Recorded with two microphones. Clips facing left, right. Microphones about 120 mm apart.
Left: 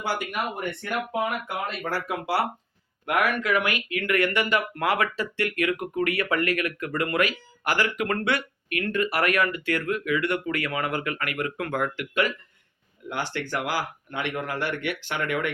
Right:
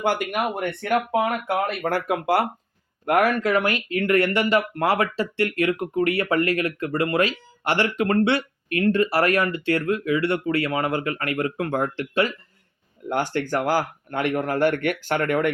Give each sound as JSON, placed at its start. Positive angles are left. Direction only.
{"t": 0.0, "sound": "speech", "side_deg": -55}
{"t": 3.1, "sound": "speech", "side_deg": -40}
{"t": 13.1, "sound": "speech", "side_deg": -45}